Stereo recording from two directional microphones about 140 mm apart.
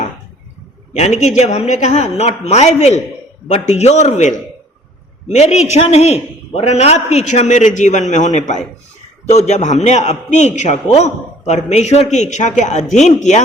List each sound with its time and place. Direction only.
0.9 s a man's voice: 55° left (ahead or behind)